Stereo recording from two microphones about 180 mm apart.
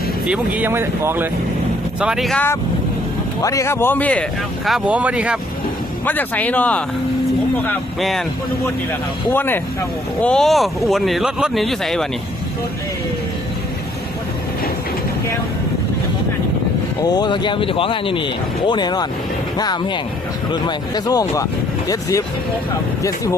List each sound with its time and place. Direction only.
0.3 s speech: 10° right (ahead or behind)
6.1 s speech: 10° left (ahead or behind)
9.3 s speech: 10° left (ahead or behind)
17.0 s speech: 20° left (ahead or behind)